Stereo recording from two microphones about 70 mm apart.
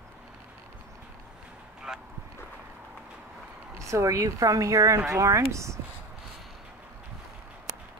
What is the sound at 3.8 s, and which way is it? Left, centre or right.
Speech, right.